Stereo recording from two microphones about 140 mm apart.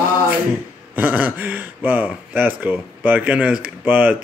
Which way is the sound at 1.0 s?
15° right (ahead or behind).